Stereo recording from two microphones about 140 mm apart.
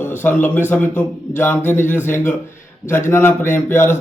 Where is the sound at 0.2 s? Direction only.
15° left (ahead or behind).